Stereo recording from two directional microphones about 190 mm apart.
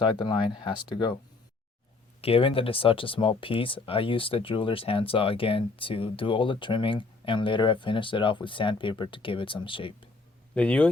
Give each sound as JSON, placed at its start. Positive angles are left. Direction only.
{"t": 0.0, "sound": "speech", "side_deg": 25}
{"t": 2.2, "sound": "speech", "side_deg": 30}
{"t": 10.5, "sound": "speech", "side_deg": 5}